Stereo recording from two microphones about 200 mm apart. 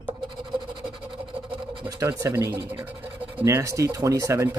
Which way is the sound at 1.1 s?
25° right (ahead or behind).